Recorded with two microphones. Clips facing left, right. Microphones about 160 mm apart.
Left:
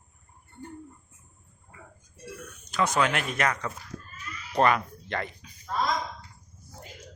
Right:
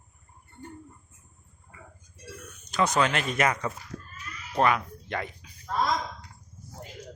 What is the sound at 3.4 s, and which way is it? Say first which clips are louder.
Speech: right 2 dB; 10° right (ahead or behind).